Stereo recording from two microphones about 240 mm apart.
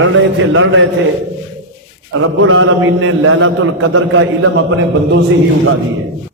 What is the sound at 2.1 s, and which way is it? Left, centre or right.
A man's voice, right.